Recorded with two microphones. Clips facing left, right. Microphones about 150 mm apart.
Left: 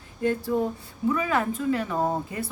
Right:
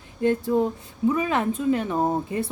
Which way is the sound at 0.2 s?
20° right (ahead or behind).